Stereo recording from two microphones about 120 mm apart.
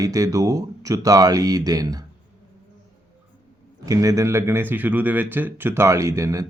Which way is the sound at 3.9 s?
30° right (ahead or behind).